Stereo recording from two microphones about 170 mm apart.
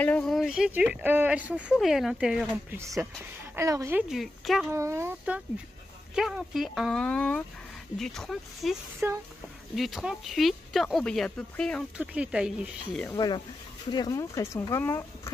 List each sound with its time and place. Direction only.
0.0 s speech: 5° left (ahead or behind)
2.8 s speech: 15° right (ahead or behind)
4.1 s speech: centre (ahead or behind)
4.7 s speech: 15° right (ahead or behind)
9.0 s speech: 10° right (ahead or behind); by 11.8 s 5° left (ahead or behind)
12.0 s speech: 5° right (ahead or behind)
13.0 s speech: 20° left (ahead or behind)